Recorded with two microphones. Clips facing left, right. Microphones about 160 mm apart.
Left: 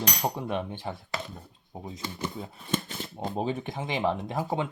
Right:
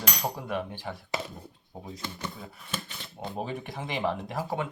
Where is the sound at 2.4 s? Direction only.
30° left (ahead or behind).